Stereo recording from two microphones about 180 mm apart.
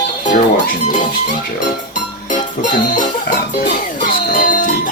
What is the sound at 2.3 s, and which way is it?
Music, 45° left (ahead or behind).